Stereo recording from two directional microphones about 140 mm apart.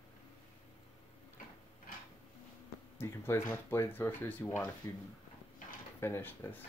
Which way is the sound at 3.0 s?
20° left (ahead or behind).